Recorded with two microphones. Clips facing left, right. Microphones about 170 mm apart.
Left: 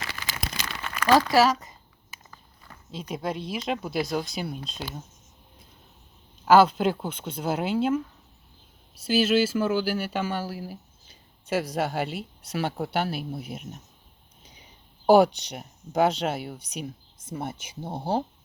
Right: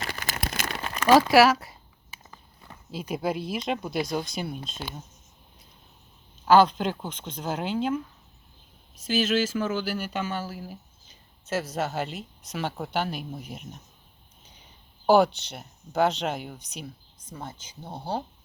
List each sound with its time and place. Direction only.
0.1 s crumpling: 50° right (ahead or behind)
1.3 s speech: 10° right (ahead or behind)
2.9 s speech: 5° right (ahead or behind)
6.4 s speech: 5° left (ahead or behind)
9.0 s speech: 5° left (ahead or behind)
15.0 s speech: 10° left (ahead or behind)
17.8 s speech: 25° left (ahead or behind)